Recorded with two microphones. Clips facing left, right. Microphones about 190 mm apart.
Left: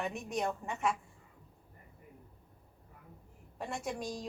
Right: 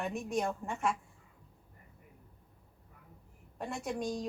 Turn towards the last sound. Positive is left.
turn(degrees=0)  # may be behind; listen again after turning